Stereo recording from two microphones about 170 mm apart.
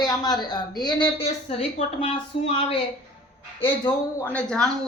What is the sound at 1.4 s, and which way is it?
Speech, 45° left (ahead or behind).